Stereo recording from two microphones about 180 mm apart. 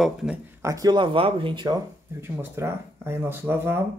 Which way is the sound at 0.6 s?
20° right (ahead or behind).